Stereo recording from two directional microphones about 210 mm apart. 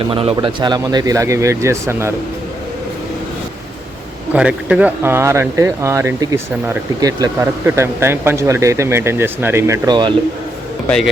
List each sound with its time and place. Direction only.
0.1 s speech: 25° right (ahead or behind)
4.3 s speech: 5° right (ahead or behind)
10.8 s a man's voice: 5° left (ahead or behind)